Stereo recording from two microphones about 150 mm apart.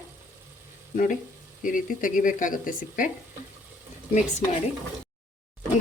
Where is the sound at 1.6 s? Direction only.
60° left (ahead or behind).